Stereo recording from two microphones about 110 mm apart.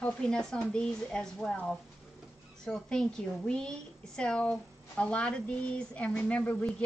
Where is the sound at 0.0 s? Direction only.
10° left (ahead or behind).